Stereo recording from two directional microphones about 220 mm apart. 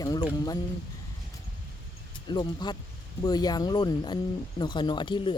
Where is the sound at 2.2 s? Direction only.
20° left (ahead or behind).